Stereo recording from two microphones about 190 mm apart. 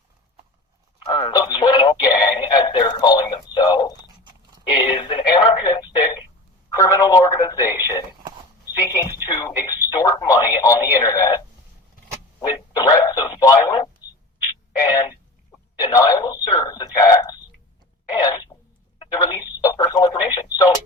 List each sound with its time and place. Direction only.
1.0 s speech: 25° left (ahead or behind)
6.7 s speech: 15° left (ahead or behind)
15.8 s telephone: 20° left (ahead or behind)
18.1 s a sound: 20° left (ahead or behind)
19.0 s telephone: 20° left (ahead or behind)
19.6 s radio: 20° left (ahead or behind)